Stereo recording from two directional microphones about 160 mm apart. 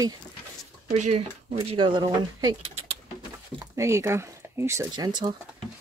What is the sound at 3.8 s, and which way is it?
Speech, 15° right (ahead or behind).